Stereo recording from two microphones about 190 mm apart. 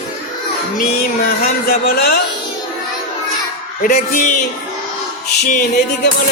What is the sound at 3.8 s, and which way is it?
Speech, 45° left (ahead or behind).